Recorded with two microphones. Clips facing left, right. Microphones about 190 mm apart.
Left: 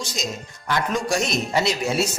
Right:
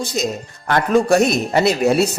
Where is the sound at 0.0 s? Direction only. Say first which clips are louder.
Right 8 dB; 55° right (ahead or behind).